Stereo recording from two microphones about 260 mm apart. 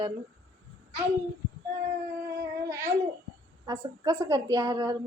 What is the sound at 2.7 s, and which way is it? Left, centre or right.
Speech, centre.